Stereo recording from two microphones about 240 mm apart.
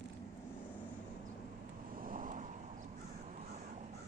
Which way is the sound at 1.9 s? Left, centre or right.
Right.